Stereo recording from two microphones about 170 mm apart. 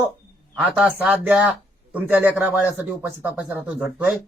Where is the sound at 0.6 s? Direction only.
10° right (ahead or behind).